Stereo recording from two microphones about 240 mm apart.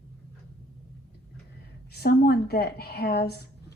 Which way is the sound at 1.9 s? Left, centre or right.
Left.